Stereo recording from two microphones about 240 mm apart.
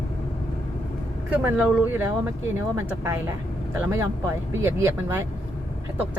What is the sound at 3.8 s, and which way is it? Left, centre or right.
Speech, centre.